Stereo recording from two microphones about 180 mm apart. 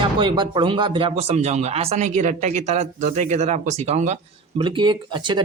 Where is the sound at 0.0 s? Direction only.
25° right (ahead or behind).